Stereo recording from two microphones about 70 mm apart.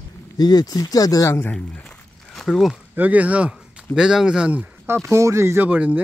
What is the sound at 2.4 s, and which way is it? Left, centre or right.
Speech, centre.